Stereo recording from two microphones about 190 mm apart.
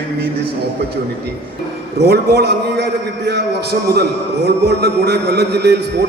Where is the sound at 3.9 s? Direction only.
60° right (ahead or behind).